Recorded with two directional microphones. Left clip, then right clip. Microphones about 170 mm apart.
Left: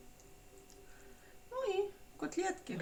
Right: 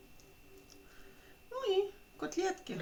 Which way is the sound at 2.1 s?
20° right (ahead or behind).